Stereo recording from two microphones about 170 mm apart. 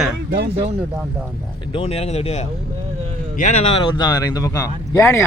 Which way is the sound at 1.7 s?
35° left (ahead or behind).